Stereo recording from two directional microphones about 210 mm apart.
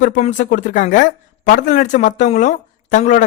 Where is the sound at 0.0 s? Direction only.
35° left (ahead or behind).